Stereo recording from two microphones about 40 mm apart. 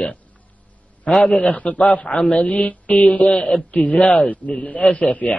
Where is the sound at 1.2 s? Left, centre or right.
Left.